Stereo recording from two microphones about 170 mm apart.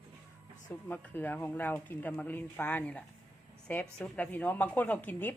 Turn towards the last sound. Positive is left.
turn(degrees=10)  # may be behind; listen again after turning